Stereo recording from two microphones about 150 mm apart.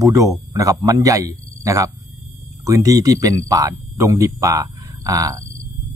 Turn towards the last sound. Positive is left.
turn(degrees=-20)  # may be behind; listen again after turning